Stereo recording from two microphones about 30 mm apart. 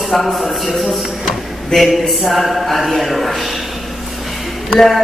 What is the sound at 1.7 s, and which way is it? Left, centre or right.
Speech, left.